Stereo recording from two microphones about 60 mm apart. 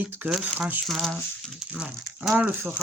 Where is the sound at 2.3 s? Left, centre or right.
Centre.